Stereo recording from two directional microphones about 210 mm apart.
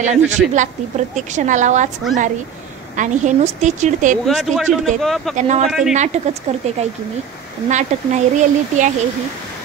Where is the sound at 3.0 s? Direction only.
35° right (ahead or behind).